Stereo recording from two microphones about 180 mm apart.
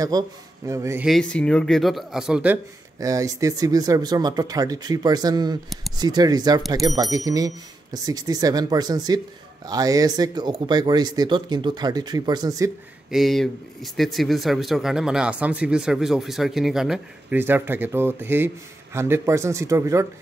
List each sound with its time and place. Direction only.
0.1 s a man's voice: 20° right (ahead or behind)
1.0 s a man's voice: 5° left (ahead or behind); by 12.7 s 20° right (ahead or behind)
13.1 s speech: centre (ahead or behind); by 20.1 s 15° right (ahead or behind)